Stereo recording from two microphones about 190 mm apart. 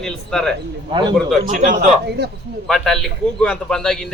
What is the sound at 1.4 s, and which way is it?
Speech, 40° right (ahead or behind).